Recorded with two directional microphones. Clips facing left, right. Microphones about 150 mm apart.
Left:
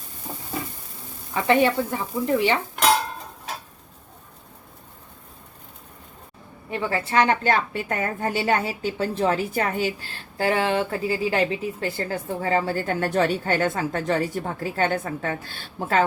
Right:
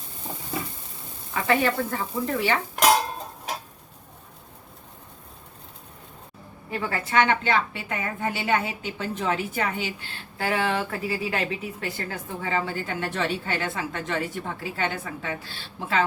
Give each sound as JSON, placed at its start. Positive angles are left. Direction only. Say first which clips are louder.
{"t": 1.3, "sound": "sizzle", "louder": "left 4 dB", "side_deg": 20}
{"t": 6.7, "sound": "a woman's voice", "louder": "left 3 dB", "side_deg": 30}